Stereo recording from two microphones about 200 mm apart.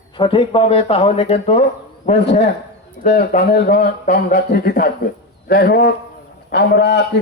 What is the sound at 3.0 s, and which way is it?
A man's voice, 50° left (ahead or behind).